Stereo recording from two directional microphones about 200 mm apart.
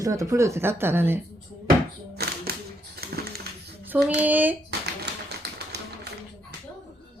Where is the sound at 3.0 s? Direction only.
50° right (ahead or behind).